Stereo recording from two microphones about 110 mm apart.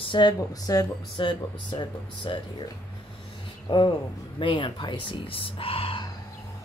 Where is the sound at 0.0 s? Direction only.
45° left (ahead or behind).